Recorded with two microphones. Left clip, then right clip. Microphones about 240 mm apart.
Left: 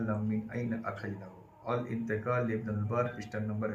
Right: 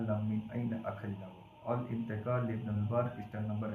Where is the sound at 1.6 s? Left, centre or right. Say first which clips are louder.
Left 3 dB; centre.